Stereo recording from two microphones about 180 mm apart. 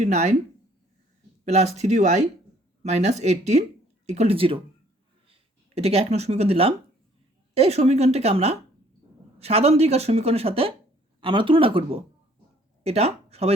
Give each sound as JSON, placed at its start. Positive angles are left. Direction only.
{"t": 0.0, "sound": "a woman's voice", "side_deg": -40}
{"t": 1.5, "sound": "a woman's voice", "side_deg": -35}